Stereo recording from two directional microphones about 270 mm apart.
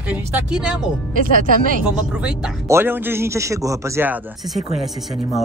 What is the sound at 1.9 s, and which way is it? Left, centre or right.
A man's voice, centre.